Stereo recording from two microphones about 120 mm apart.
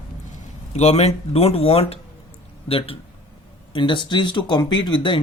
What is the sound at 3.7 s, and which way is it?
Speech, 45° left (ahead or behind).